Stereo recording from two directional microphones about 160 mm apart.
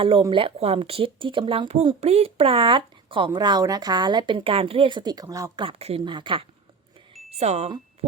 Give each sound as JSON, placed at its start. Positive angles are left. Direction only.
{"t": 0.0, "sound": "speech", "side_deg": -35}
{"t": 5.6, "sound": "speech", "side_deg": -35}
{"t": 7.3, "sound": "speech", "side_deg": -45}